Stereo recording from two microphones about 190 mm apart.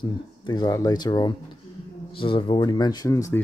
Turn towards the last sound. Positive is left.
turn(degrees=15)  # may be behind; listen again after turning